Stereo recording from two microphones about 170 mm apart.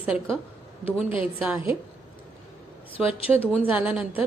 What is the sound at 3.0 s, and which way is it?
A woman's voice, 5° right (ahead or behind).